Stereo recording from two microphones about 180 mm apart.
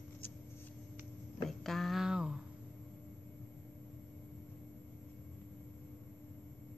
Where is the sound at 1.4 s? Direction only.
Centre (ahead or behind).